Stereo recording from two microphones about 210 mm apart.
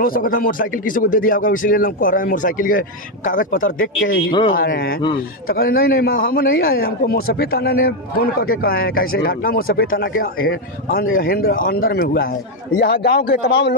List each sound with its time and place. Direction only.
0.0 s speech: 40° left (ahead or behind)
4.3 s speech: 20° left (ahead or behind)
5.5 s a man's voice: 45° left (ahead or behind)